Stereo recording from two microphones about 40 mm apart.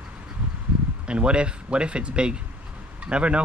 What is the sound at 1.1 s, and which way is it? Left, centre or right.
Speech, right.